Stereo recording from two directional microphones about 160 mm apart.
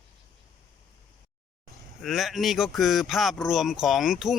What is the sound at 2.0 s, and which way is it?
Speech, centre (ahead or behind).